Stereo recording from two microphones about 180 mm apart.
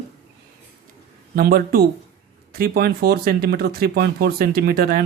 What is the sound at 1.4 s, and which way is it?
Speech, 55° right (ahead or behind).